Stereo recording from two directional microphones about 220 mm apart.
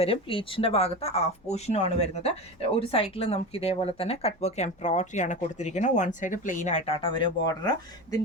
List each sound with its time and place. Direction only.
0.0 s speech: 25° left (ahead or behind)